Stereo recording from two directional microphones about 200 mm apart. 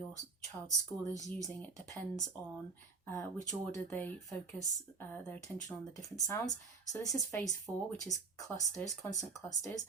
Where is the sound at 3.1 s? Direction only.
15° left (ahead or behind).